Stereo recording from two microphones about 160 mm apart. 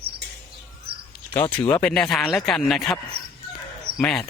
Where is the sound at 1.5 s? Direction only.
10° left (ahead or behind).